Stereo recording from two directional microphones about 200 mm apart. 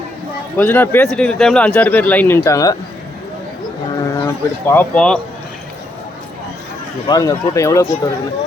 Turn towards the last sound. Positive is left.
turn(degrees=15)  # may be behind; listen again after turning